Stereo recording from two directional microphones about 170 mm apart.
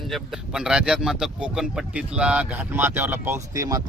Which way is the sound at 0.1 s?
5° right (ahead or behind).